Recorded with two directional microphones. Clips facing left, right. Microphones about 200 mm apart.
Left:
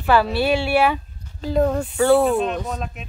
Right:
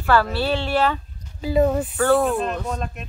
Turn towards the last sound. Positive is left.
turn(degrees=0)  # may be behind; listen again after turning